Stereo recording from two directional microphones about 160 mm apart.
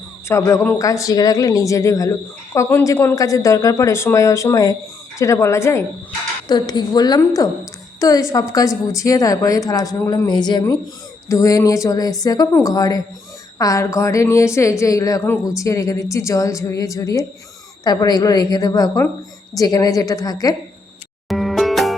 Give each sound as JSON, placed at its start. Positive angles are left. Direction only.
{"t": 0.3, "sound": "speech", "side_deg": 20}
{"t": 21.2, "sound": "music", "side_deg": 0}